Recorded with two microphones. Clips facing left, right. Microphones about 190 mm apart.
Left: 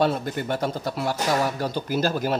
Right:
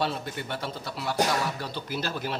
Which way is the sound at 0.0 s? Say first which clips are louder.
Left 7 dB; 45° left (ahead or behind).